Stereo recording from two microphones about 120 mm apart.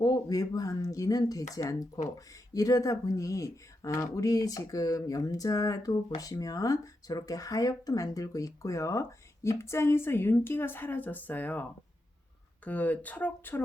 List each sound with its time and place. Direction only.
0.0 s speech: 30° left (ahead or behind); by 11.6 s 15° left (ahead or behind)
12.6 s speech: 15° left (ahead or behind)